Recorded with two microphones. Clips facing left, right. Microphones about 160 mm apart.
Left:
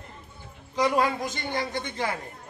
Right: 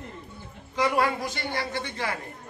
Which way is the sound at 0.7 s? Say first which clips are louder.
Left 1 dB; 15° left (ahead or behind).